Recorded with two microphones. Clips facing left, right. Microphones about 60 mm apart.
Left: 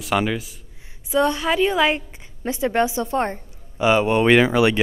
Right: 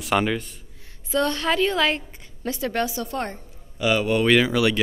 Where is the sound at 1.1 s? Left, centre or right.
Centre.